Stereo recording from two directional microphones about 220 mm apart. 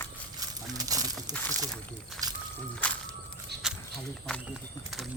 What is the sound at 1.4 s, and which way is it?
Speech, 5° left (ahead or behind).